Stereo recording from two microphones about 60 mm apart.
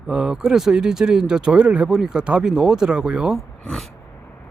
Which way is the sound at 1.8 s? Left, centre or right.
Centre.